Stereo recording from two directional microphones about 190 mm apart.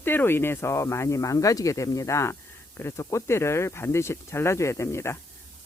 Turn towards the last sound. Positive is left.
turn(degrees=15)  # may be behind; listen again after turning